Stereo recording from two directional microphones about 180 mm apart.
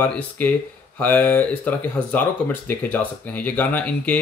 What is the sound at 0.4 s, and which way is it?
Speech, 10° left (ahead or behind).